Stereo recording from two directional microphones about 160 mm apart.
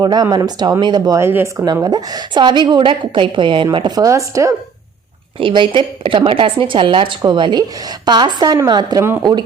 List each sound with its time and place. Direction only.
0.0 s a woman's voice: 25° right (ahead or behind)
1.6 s a woman's voice: 25° right (ahead or behind)
5.4 s a woman's voice: 30° right (ahead or behind)